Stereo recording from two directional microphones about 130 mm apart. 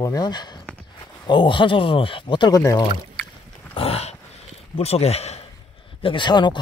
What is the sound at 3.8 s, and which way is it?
Dog, 50° left (ahead or behind).